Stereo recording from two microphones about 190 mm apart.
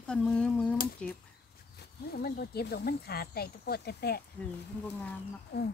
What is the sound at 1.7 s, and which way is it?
Speech, 55° left (ahead or behind).